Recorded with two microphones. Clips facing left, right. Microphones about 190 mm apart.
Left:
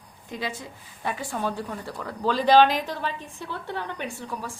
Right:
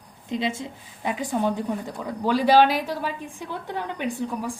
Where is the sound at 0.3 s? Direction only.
25° right (ahead or behind).